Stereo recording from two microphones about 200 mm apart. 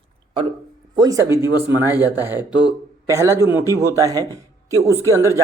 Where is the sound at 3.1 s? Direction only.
15° right (ahead or behind).